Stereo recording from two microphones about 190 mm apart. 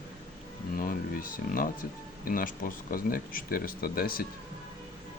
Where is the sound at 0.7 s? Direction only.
50° left (ahead or behind).